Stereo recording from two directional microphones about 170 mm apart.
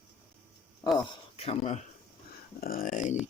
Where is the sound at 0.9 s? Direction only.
35° left (ahead or behind).